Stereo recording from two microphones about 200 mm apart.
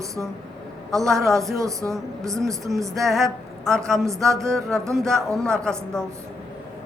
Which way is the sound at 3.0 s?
Centre (ahead or behind).